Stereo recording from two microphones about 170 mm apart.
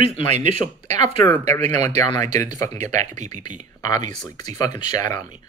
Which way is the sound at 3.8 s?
20° left (ahead or behind).